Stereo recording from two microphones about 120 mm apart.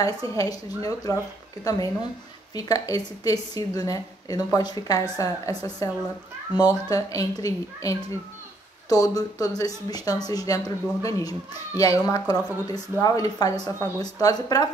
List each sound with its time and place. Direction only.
0.0 s a woman's voice: 30° left (ahead or behind)
6.5 s speech: 15° right (ahead or behind)
6.9 s a woman's voice: 30° left (ahead or behind)